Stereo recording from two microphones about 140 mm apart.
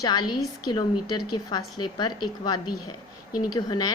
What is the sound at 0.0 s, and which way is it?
A woman's voice, 30° left (ahead or behind).